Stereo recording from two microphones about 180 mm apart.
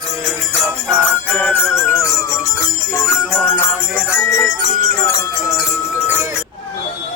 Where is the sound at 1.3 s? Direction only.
5° left (ahead or behind).